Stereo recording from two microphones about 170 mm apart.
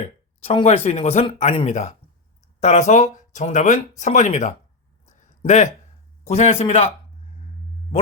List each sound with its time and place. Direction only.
0.0 s speech: 35° left (ahead or behind)